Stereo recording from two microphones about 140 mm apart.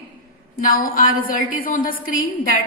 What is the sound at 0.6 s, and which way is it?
A woman's voice, 80° left.